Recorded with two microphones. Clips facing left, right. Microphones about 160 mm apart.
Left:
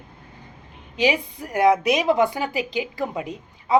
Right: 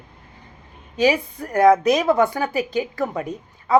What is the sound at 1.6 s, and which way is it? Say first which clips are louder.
Speech: right 3 dB; 40° right (ahead or behind).